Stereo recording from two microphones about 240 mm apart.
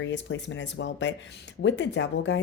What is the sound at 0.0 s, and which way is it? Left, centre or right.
Speech, left.